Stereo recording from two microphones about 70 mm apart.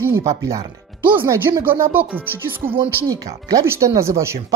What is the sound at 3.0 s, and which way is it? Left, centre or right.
Speech, right.